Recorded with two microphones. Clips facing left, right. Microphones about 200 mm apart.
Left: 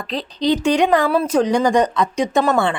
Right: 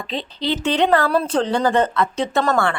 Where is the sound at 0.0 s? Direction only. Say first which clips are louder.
Left 2 dB; centre (ahead or behind).